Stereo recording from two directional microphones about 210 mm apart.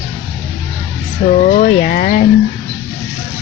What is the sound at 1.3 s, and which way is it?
Speech, 40° left (ahead or behind).